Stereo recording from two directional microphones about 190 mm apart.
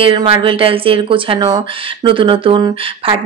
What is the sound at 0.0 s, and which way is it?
A woman's voice, 25° right (ahead or behind).